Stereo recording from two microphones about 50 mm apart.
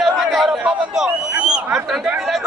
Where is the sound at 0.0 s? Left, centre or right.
Centre.